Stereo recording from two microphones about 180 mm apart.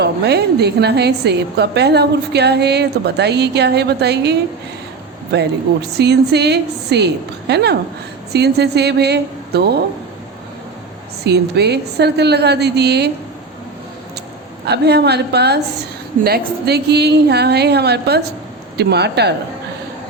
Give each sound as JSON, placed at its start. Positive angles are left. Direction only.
{"t": 0.0, "sound": "a woman's voice", "side_deg": -65}
{"t": 11.2, "sound": "a woman's voice", "side_deg": -65}
{"t": 14.6, "sound": "a woman's voice", "side_deg": -65}